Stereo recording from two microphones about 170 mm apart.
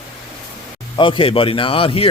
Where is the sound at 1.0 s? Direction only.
30° left (ahead or behind).